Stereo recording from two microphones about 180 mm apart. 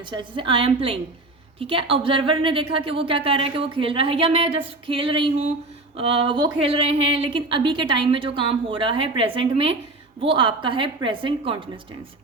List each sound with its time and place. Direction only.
0.0 s a woman's voice: 25° right (ahead or behind)